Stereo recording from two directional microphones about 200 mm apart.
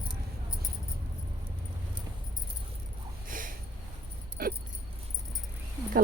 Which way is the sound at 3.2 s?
40° right (ahead or behind).